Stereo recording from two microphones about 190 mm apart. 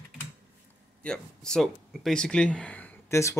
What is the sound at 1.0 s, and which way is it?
Speech, 5° left (ahead or behind).